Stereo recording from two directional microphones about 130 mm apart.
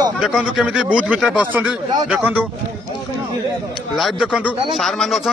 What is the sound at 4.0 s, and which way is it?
A man's voice, centre (ahead or behind).